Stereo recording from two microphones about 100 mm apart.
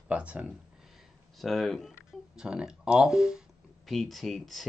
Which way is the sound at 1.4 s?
Centre (ahead or behind).